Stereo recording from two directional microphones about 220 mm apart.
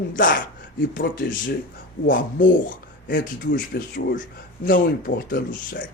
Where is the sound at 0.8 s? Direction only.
40° left (ahead or behind).